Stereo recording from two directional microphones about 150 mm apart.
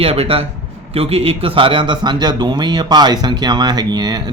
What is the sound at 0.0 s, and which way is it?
Speech, 40° right (ahead or behind).